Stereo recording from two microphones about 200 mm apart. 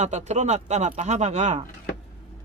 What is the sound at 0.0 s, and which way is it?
Speech, 35° right (ahead or behind).